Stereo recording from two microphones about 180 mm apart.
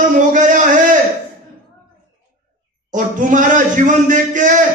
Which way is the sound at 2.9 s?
45° right (ahead or behind).